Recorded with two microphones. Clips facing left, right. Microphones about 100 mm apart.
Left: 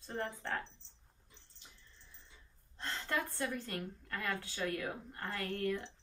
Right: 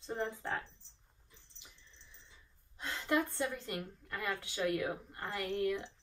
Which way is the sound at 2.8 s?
15° right (ahead or behind).